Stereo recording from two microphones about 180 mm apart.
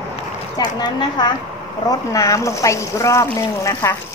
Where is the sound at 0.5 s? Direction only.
25° left (ahead or behind).